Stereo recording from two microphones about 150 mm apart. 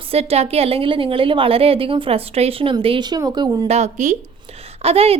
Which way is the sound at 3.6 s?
45° right (ahead or behind).